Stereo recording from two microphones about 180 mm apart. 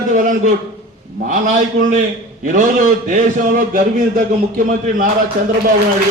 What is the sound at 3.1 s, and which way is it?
Speech, 45° right (ahead or behind).